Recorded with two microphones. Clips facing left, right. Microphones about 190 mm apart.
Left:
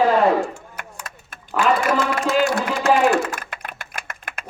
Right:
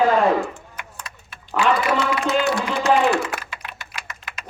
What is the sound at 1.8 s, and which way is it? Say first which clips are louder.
A man's voice: left 1 dB; 45° left (ahead or behind).